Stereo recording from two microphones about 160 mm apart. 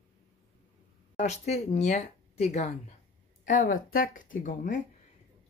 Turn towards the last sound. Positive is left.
turn(degrees=55)  # may be behind; listen again after turning